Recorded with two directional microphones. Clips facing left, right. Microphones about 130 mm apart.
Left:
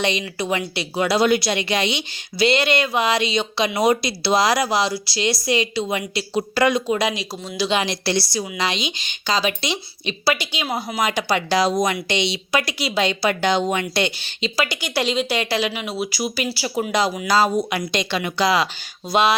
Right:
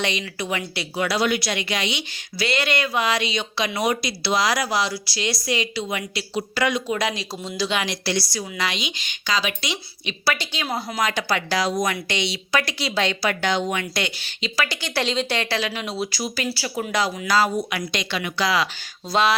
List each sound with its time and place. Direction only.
0.0 s a woman's voice: 25° left (ahead or behind)
7.7 s a woman's voice: 30° left (ahead or behind)
10.2 s a woman's voice: 15° left (ahead or behind)
14.7 s a woman's voice: 10° left (ahead or behind)